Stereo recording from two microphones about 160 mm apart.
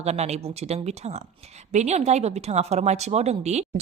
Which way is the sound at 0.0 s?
45° right (ahead or behind).